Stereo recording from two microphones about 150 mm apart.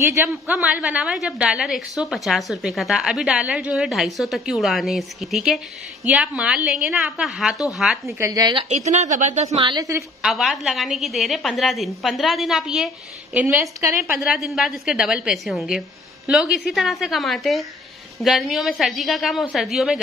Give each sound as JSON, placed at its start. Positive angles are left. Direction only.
{"t": 0.0, "sound": "a woman's voice", "side_deg": -15}
{"t": 8.2, "sound": "a woman's voice", "side_deg": -25}
{"t": 8.6, "sound": "a woman's voice", "side_deg": -50}
{"t": 9.6, "sound": "a woman's voice", "side_deg": -30}
{"t": 10.2, "sound": "a woman's voice", "side_deg": 0}
{"t": 14.1, "sound": "a woman's voice", "side_deg": -5}